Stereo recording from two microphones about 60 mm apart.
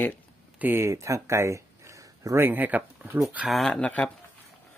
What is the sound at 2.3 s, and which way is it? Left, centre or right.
Speech, right.